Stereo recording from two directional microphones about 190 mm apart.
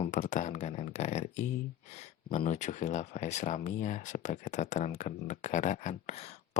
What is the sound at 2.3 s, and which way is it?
Speech, 40° left (ahead or behind).